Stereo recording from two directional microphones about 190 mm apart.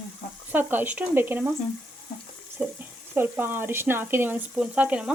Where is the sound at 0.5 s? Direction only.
10° right (ahead or behind).